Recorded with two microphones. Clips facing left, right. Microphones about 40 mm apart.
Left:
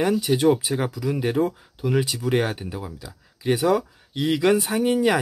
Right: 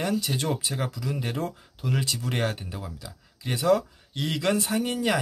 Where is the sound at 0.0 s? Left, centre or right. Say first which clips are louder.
Left 8 dB; left.